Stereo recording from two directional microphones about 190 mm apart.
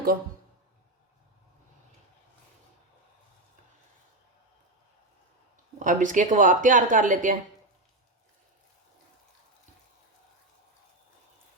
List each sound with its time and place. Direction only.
5.8 s speech: 40° right (ahead or behind)